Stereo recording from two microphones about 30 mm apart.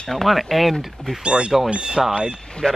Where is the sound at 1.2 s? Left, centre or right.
Right.